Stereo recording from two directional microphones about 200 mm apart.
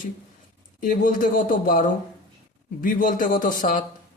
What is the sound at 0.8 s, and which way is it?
A man's voice, 45° left (ahead or behind).